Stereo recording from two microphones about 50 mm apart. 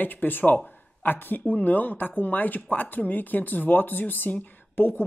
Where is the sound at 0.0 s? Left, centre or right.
Left.